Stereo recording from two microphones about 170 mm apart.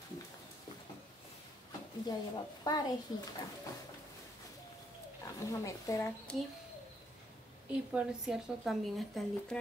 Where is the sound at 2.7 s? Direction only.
25° left (ahead or behind).